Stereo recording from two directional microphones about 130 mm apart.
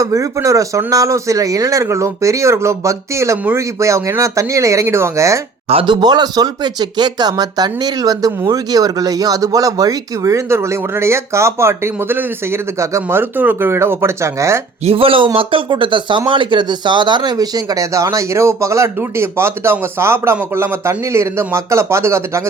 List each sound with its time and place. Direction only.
0.0 s speech: 25° right (ahead or behind)
5.6 s speech: 45° right (ahead or behind); by 14.6 s 20° right (ahead or behind)
14.8 s speech: 45° right (ahead or behind); by 22.2 s 20° right (ahead or behind)